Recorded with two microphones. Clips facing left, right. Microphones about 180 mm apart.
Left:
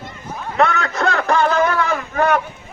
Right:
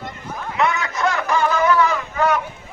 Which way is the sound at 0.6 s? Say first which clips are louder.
Left 3 dB; 60° left (ahead or behind).